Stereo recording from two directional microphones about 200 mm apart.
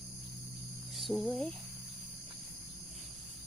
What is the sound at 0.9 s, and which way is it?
Speech, centre (ahead or behind).